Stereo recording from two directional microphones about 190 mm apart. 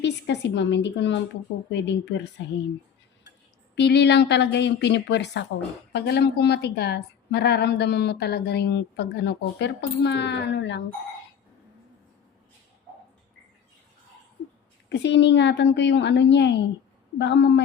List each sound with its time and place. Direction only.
0.0 s a woman's voice: 65° left (ahead or behind)
3.8 s a woman's voice: 65° left (ahead or behind)
14.8 s a woman's voice: 65° left (ahead or behind)